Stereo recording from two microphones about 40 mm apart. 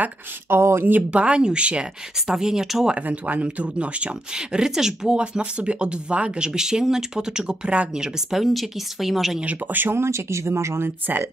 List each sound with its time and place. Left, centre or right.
0.5 s speech: right
1.1 s speech: right
2.2 s speech: centre
3.0 s speech: right
4.4 s speech: centre
8.3 s speech: centre
9.7 s speech: right
9.9 s speech: right